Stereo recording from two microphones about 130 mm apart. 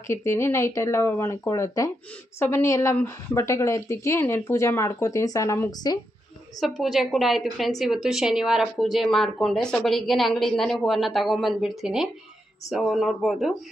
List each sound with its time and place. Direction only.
0.1 s a woman's voice: 20° left (ahead or behind)
6.6 s a woman's voice: centre (ahead or behind)